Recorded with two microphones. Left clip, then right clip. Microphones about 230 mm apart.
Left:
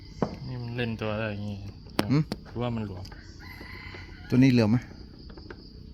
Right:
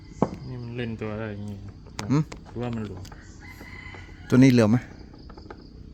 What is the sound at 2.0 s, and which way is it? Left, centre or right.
Speech, centre.